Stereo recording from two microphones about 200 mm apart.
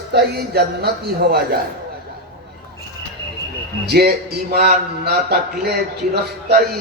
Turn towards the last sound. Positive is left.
turn(degrees=-55)  # may be behind; listen again after turning